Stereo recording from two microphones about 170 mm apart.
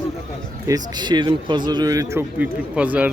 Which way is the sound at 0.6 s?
25° right (ahead or behind).